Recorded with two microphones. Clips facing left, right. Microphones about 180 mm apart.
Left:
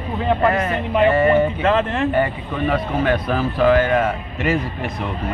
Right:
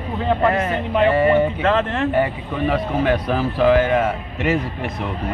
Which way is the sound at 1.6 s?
15° left (ahead or behind).